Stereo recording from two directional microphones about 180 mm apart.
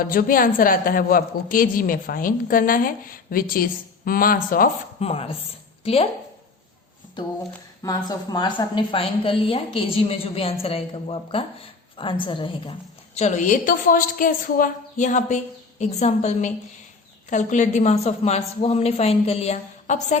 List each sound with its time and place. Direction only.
0.0 s a woman's voice: 50° left (ahead or behind)
4.9 s a woman's voice: 35° left (ahead or behind)
7.8 s a woman's voice: 20° left (ahead or behind)
13.1 s a woman's voice: 40° left (ahead or behind)